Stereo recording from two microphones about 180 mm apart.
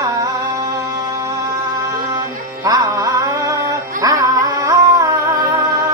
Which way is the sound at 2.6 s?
20° right (ahead or behind).